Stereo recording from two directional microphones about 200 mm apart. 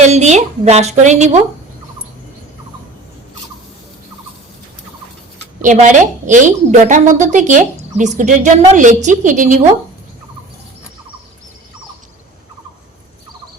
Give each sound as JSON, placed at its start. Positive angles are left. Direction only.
{"t": 0.0, "sound": "a woman's voice", "side_deg": -35}
{"t": 5.6, "sound": "a woman's voice", "side_deg": -40}